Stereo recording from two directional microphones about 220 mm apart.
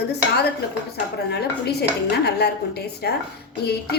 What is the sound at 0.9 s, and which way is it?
A woman's voice, 45° left (ahead or behind).